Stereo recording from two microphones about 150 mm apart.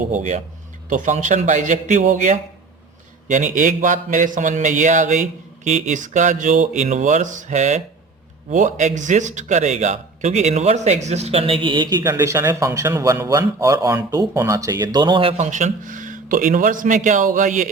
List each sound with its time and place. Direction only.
0.1 s a man's voice: 55° right (ahead or behind); by 12.1 s 30° right (ahead or behind)
12.1 s speech: 15° right (ahead or behind); by 15.4 s 35° right (ahead or behind)
15.4 s a man's voice: 55° right (ahead or behind)